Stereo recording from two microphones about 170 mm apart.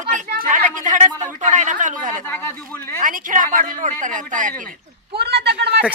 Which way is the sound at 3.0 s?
50° right (ahead or behind).